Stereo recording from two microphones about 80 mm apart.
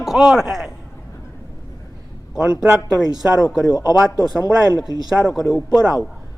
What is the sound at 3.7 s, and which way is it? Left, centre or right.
Speech, left.